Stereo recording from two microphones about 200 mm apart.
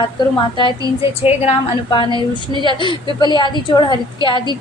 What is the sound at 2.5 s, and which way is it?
Speech, 25° right (ahead or behind).